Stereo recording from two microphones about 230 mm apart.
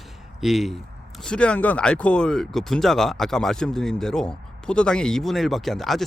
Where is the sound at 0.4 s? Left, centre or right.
Centre.